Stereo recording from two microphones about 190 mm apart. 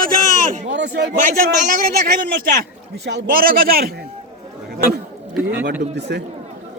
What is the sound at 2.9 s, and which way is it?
A man's voice, 60° right (ahead or behind).